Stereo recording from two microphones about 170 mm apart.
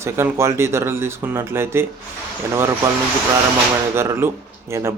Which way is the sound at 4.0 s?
15° right (ahead or behind).